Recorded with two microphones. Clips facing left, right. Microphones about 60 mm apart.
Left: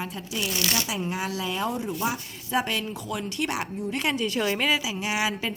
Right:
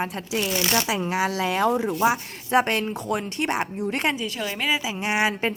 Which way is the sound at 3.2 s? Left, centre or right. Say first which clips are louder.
Right 3 dB; right.